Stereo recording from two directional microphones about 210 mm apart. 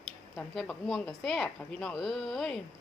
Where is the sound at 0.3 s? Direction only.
5° left (ahead or behind).